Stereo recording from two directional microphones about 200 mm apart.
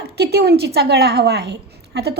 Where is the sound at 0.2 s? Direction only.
55° right (ahead or behind).